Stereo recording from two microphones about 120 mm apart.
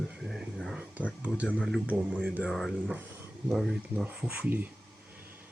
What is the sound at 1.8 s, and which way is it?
Speech, 10° right (ahead or behind).